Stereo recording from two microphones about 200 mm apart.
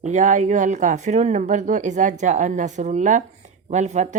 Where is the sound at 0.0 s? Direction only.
35° right (ahead or behind).